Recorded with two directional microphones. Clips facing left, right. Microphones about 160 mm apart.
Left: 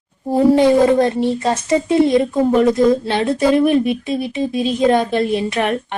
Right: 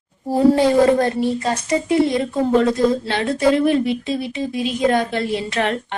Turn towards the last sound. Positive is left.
turn(degrees=20)  # may be behind; listen again after turning